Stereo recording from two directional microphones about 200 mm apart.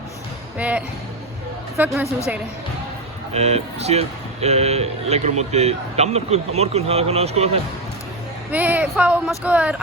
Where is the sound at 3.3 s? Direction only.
30° right (ahead or behind).